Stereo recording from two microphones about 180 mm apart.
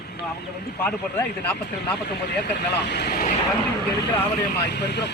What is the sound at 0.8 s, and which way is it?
Speech, 10° left (ahead or behind).